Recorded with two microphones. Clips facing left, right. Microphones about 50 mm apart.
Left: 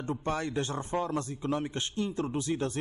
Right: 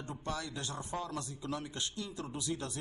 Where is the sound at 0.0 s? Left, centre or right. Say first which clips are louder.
Left 8 dB; left.